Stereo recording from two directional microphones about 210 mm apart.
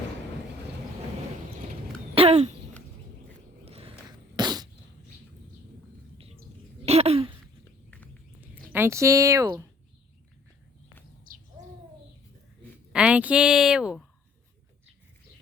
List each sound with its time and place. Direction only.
2.1 s a sound: 30° right (ahead or behind)
3.7 s a sound: 25° right (ahead or behind)
4.4 s cough: 20° right (ahead or behind)
6.8 s throat clearing: 30° right (ahead or behind)
8.4 s speech: 10° right (ahead or behind)
11.3 s bird: 40° right (ahead or behind)
12.9 s a woman's voice: 5° right (ahead or behind)